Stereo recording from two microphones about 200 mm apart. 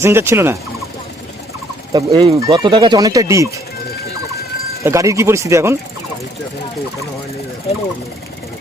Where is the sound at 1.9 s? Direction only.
15° right (ahead or behind).